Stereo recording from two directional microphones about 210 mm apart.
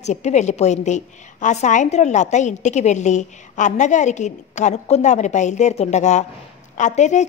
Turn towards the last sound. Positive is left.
turn(degrees=35)  # may be behind; listen again after turning